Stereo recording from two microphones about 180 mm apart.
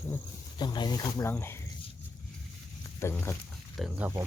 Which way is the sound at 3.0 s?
15° left (ahead or behind).